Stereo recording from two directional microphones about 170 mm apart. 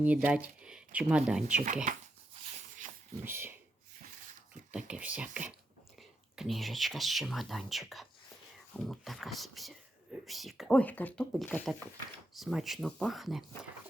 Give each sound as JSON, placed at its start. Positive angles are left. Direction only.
{"t": 0.0, "sound": "speech", "side_deg": -10}
{"t": 1.6, "sound": "speech", "side_deg": -45}
{"t": 3.2, "sound": "speech", "side_deg": -15}
{"t": 4.9, "sound": "speech", "side_deg": -10}